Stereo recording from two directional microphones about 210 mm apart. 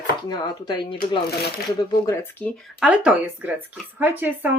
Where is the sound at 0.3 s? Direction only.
20° left (ahead or behind).